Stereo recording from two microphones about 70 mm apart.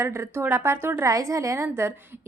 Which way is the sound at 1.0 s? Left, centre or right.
Right.